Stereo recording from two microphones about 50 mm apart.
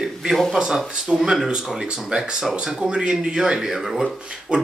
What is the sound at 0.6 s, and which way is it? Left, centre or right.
Speech, centre.